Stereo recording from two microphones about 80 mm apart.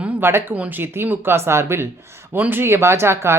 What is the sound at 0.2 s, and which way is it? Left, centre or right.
Speech, right.